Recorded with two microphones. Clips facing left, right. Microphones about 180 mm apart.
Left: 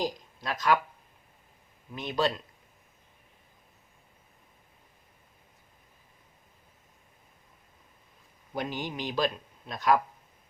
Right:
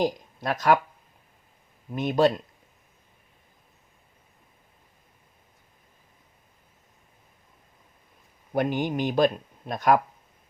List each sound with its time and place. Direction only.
0.0 s speech: 55° right (ahead or behind)
1.9 s a man's voice: 50° right (ahead or behind)
8.5 s a man's voice: 55° right (ahead or behind)